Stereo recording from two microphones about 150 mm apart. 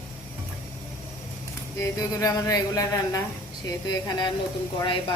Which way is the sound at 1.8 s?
25° left (ahead or behind).